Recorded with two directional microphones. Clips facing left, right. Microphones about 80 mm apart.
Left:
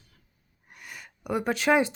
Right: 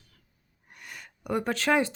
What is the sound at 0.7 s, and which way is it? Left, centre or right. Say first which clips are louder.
Gasp: left 1 dB; centre.